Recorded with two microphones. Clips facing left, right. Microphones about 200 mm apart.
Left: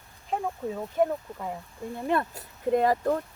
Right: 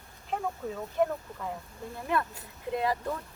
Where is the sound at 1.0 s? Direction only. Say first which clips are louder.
Left 3 dB; 15° left (ahead or behind).